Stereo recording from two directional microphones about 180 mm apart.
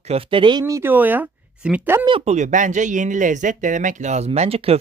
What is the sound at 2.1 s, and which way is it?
Speech, 35° right (ahead or behind).